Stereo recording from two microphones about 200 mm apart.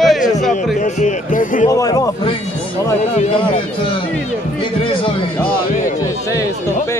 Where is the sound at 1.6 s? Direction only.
20° left (ahead or behind).